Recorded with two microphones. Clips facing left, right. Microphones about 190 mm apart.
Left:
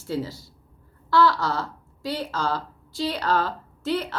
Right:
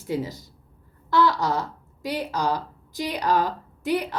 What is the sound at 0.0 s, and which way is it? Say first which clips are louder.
A woman's voice: right 1 dB; 15° right (ahead or behind).